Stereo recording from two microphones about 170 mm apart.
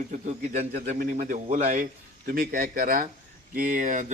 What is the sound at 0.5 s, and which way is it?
Speech, 40° right (ahead or behind).